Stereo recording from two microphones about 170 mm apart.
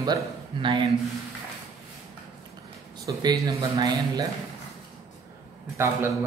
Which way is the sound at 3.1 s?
20° right (ahead or behind).